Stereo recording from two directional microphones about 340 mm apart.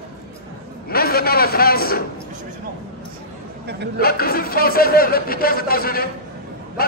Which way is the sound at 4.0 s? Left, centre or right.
Left.